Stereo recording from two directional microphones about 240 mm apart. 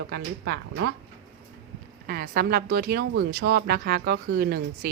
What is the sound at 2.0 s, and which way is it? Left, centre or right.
Speech, right.